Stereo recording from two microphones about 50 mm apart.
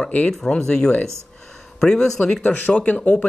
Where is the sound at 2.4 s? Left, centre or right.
Left.